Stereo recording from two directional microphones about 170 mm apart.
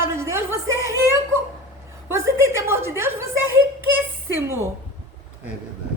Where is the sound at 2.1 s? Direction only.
15° right (ahead or behind).